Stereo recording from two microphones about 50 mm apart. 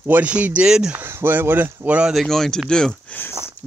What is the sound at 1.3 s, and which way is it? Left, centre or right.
Speech, right.